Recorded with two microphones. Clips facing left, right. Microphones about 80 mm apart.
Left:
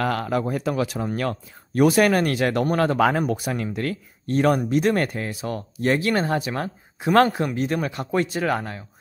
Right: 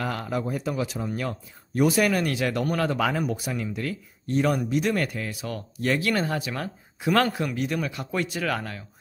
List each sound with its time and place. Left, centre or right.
0.0 s speech: left